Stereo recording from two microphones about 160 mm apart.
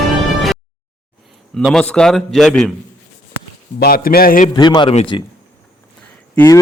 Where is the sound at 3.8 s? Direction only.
70° left (ahead or behind).